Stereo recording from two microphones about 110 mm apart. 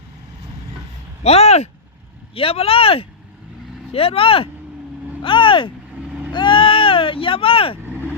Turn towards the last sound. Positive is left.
turn(degrees=55)  # may be behind; listen again after turning